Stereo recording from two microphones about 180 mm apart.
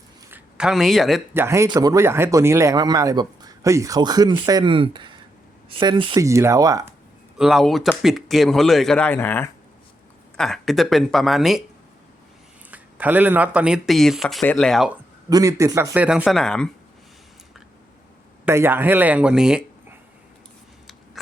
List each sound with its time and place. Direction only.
0.3 s a sound: 5° right (ahead or behind)
1.3 s speech: 15° right (ahead or behind)
6.2 s a man's voice: 15° right (ahead or behind)
7.3 s speech: centre (ahead or behind)
12.7 s speech: 10° right (ahead or behind)
15.3 s a man's voice: 20° right (ahead or behind); by 16.6 s 5° left (ahead or behind)
18.4 s a man's voice: 15° right (ahead or behind)